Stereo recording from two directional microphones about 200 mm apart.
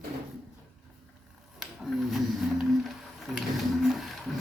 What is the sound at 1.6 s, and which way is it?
Wild animals, centre (ahead or behind).